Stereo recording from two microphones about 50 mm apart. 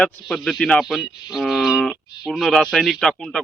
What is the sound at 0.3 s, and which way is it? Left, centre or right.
Speech, centre.